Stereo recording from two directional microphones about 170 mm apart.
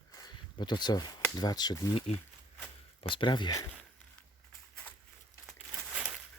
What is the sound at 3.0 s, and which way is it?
Speech, 30° left (ahead or behind).